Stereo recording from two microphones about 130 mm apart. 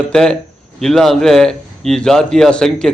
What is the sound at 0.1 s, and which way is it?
A man's voice, 5° left (ahead or behind).